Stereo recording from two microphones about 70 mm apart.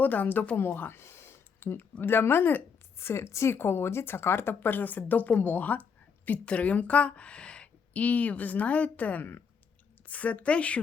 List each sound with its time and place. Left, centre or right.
0.0 s a woman's voice: left